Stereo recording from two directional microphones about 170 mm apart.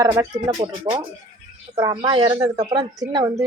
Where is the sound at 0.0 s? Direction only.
20° right (ahead or behind).